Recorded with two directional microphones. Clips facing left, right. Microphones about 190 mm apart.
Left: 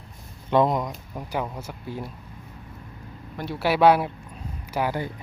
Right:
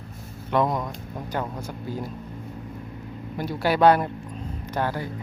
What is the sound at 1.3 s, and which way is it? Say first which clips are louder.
Speech: even; 5° left (ahead or behind).